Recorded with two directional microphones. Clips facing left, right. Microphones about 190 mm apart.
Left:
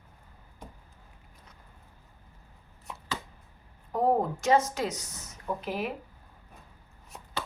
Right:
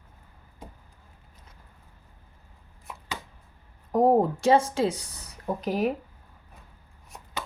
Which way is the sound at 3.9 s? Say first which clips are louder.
Right 5 dB; 40° right (ahead or behind).